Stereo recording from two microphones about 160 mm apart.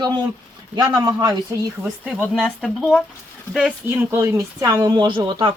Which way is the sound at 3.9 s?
15° right (ahead or behind).